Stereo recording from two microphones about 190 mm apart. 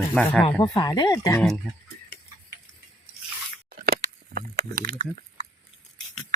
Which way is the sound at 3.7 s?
50° right (ahead or behind).